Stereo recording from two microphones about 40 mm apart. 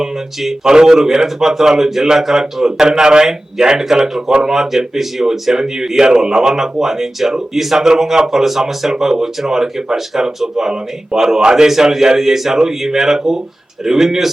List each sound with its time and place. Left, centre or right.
0.0 s speech: centre